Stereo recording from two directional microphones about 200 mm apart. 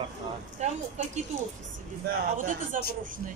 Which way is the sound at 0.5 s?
35° right (ahead or behind).